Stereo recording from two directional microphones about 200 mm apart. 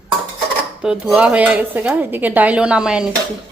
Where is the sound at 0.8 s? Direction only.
5° right (ahead or behind).